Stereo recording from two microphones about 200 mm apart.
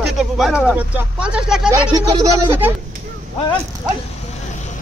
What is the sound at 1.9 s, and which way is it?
Speech, 15° right (ahead or behind).